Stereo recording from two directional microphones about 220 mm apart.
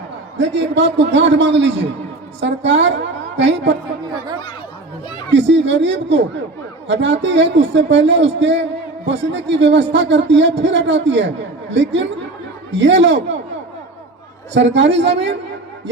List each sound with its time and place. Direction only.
0.3 s a man's voice: 55° right (ahead or behind)
4.0 s speech: 20° right (ahead or behind)
5.3 s a man's voice: 55° right (ahead or behind)
14.5 s a man's voice: 55° right (ahead or behind)